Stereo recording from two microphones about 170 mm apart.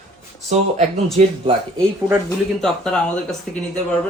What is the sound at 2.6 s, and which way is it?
Speech, 5° left (ahead or behind).